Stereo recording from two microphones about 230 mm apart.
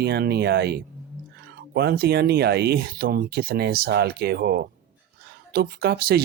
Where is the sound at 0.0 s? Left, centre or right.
Right.